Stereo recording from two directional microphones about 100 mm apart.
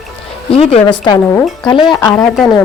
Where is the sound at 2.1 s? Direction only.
Centre (ahead or behind).